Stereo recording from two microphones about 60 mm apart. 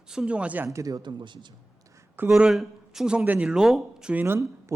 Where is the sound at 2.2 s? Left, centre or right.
Right.